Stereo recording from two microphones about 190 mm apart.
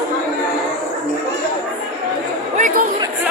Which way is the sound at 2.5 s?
40° right (ahead or behind).